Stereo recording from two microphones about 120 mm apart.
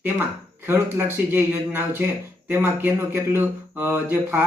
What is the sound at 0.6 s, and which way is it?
Speech, 20° right (ahead or behind).